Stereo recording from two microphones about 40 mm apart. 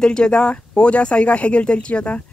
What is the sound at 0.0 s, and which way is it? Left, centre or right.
Speech, left.